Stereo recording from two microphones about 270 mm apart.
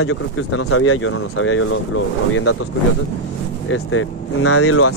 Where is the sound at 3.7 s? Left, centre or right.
Left.